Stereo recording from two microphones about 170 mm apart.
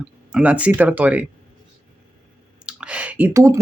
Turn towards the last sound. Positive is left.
turn(degrees=-15)  # may be behind; listen again after turning